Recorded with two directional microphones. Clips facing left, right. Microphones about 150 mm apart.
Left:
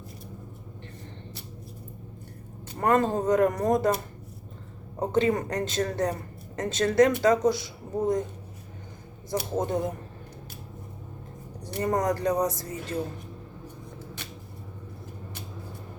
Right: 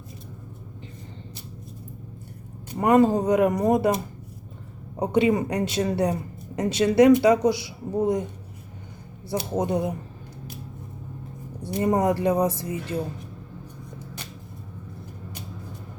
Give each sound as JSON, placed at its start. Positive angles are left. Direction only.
{"t": 2.7, "sound": "speech", "side_deg": -10}
{"t": 9.3, "sound": "speech", "side_deg": -15}
{"t": 11.7, "sound": "speech", "side_deg": -20}